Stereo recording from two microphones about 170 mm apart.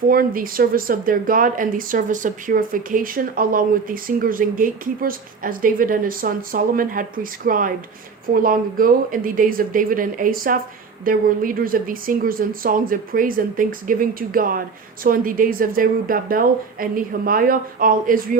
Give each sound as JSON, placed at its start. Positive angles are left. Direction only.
{"t": 0.1, "sound": "speech", "side_deg": -55}